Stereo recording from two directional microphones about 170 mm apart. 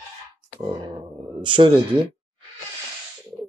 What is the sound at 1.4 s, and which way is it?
Speech, 30° right (ahead or behind).